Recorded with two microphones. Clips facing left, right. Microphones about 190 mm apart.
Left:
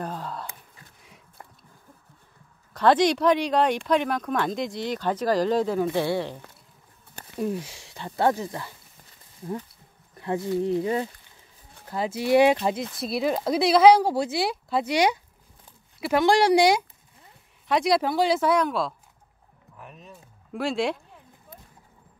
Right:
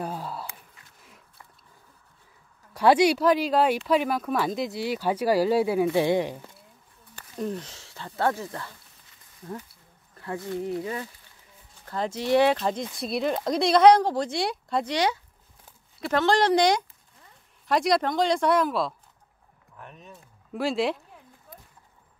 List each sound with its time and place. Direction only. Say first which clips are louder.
0.0 s a sound: even; 10° right (ahead or behind)
2.7 s speech: right 1 dB; 10° right (ahead or behind)
7.3 s speech: left 3 dB; 10° left (ahead or behind)
10.1 s a sound: left 6 dB; 20° left (ahead or behind)
10.8 s speech: left 6 dB; 25° left (ahead or behind)
11.9 s speech: left 2 dB; 10° left (ahead or behind)